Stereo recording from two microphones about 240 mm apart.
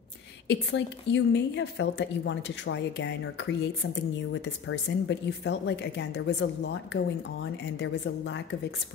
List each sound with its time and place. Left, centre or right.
0.5 s a woman's voice: left